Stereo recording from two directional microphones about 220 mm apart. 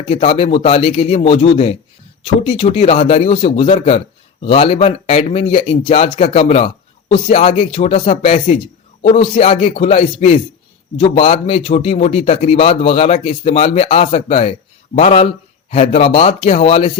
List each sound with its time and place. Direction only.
0.1 s a man's voice: 25° left (ahead or behind)